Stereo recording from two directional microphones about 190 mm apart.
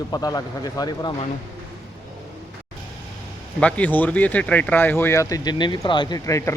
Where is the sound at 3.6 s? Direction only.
10° left (ahead or behind).